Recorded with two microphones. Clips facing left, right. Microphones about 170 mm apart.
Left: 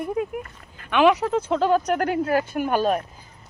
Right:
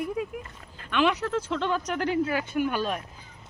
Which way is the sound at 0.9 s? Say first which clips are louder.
Left 7 dB; 55° left (ahead or behind).